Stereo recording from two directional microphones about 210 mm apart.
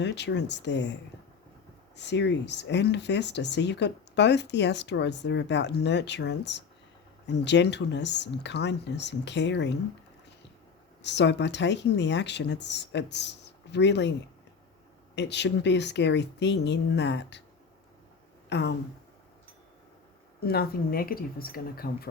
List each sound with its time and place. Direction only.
0.0 s speech: 55° left (ahead or behind)
2.0 s speech: 55° left (ahead or behind)
11.0 s speech: 55° left (ahead or behind)
15.1 s speech: 55° left (ahead or behind)
18.4 s a sound: 55° left (ahead or behind)
20.4 s speech: 45° left (ahead or behind)